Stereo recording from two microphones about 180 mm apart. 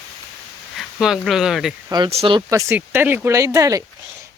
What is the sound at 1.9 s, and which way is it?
Speech, 30° right (ahead or behind).